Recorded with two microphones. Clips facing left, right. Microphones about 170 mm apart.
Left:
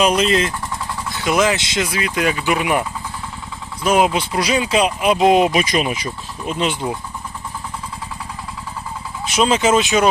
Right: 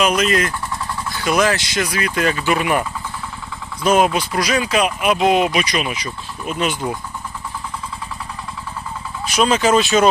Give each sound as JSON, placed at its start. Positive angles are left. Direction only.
{"t": 0.0, "sound": "speech", "side_deg": 30}
{"t": 3.8, "sound": "speech", "side_deg": 15}
{"t": 9.2, "sound": "speech", "side_deg": 25}